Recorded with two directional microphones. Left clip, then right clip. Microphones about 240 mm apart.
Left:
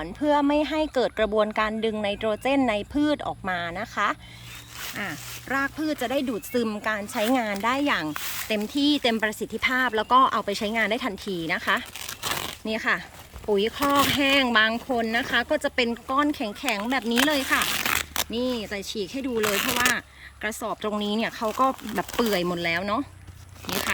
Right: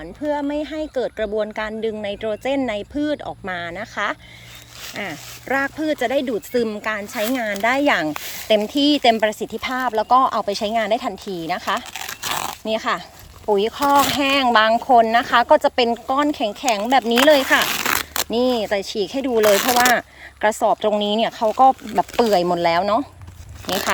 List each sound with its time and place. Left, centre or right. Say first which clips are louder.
0.0 s speech: left 1 dB; centre
21.8 s speech: right 9 dB; centre
22.2 s speech: right 8 dB; centre